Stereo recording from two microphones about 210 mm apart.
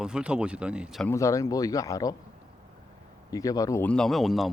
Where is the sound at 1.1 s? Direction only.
15° left (ahead or behind).